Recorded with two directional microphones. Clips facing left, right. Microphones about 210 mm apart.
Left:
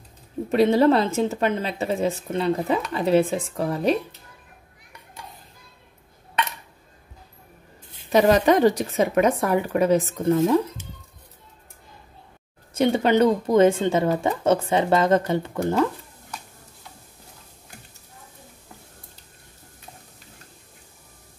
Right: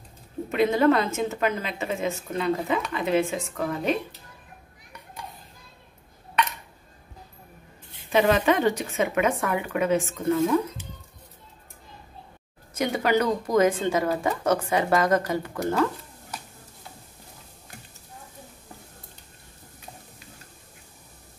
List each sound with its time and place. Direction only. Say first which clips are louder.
0.5 s a woman's voice: left 3 dB; 30° left (ahead or behind)
8.1 s a woman's voice: left 4 dB; 40° left (ahead or behind)
12.7 s speech: left 5 dB; 25° left (ahead or behind)